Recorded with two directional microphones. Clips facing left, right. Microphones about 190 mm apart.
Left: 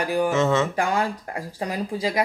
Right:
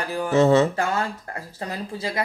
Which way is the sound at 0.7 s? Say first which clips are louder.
Left 2 dB; 15° left (ahead or behind).